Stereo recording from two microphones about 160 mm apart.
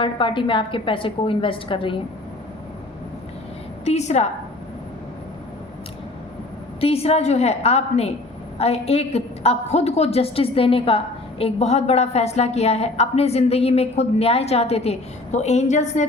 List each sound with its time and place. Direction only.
0.0 s a woman's voice: 30° left (ahead or behind)
3.8 s a woman's voice: 45° left (ahead or behind)
6.7 s a woman's voice: 40° left (ahead or behind)